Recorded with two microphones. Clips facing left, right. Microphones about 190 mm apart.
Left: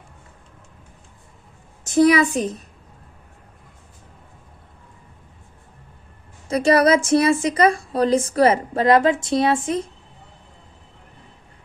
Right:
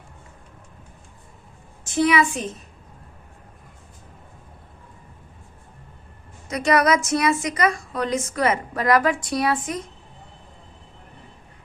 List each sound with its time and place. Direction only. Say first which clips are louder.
1.8 s a woman's voice: left 5 dB; 40° left (ahead or behind)
6.5 s a woman's voice: left 4 dB; 30° left (ahead or behind)